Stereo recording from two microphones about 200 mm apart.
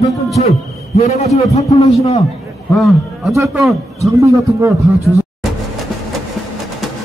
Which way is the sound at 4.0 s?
15° right (ahead or behind).